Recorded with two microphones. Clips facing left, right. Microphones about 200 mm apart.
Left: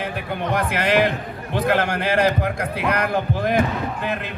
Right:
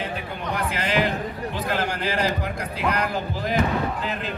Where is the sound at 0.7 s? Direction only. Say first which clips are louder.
Left 4 dB; 60° left (ahead or behind).